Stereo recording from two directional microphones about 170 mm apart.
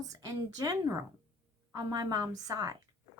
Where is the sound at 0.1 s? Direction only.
20° right (ahead or behind).